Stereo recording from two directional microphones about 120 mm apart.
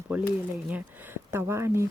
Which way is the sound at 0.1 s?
10° right (ahead or behind).